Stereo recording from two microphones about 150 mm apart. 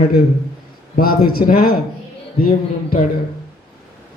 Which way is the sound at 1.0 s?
80° left.